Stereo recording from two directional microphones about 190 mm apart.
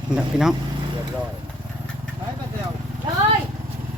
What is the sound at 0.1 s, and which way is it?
Speech, 5° right (ahead or behind).